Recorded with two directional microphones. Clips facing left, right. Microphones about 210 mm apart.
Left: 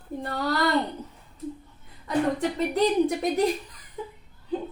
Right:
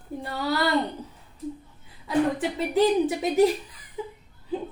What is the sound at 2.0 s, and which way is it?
A woman's voice, 5° right (ahead or behind).